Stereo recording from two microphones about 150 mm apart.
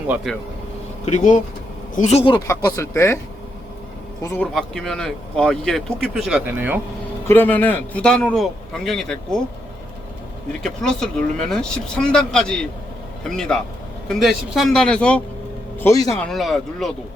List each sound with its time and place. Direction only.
0.3 s speech: centre (ahead or behind)
1.0 s speech: 55° left (ahead or behind)
2.5 s speech: 20° left (ahead or behind)
4.2 s speech: 20° left (ahead or behind)
4.5 s speech: 5° left (ahead or behind)
7.3 s speech: 10° left (ahead or behind)
10.6 s speech: 5° left (ahead or behind)